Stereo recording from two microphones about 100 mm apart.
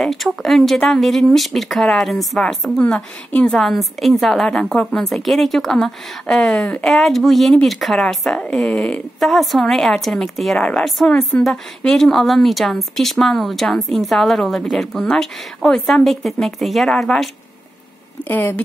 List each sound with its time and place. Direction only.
0.0 s speech: centre (ahead or behind)
2.8 s a woman's voice: 15° left (ahead or behind)
18.3 s speech: 20° left (ahead or behind)